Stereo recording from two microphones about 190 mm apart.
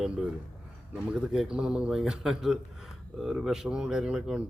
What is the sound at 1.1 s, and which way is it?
A man's voice, 5° right (ahead or behind).